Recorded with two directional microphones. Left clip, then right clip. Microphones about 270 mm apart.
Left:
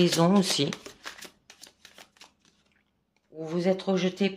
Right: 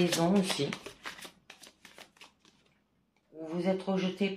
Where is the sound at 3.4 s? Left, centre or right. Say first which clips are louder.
Left 5 dB; left.